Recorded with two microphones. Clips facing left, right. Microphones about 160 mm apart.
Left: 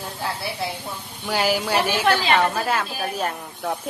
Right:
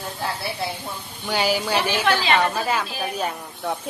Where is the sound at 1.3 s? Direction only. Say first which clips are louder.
Even; centre (ahead or behind).